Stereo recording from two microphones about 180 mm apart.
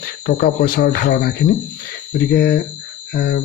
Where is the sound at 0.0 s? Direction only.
55° left (ahead or behind).